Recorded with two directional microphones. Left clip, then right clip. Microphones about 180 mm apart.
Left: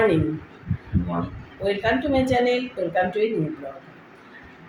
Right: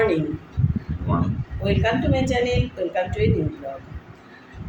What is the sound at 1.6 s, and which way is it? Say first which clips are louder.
A woman's voice: even; 25° left (ahead or behind).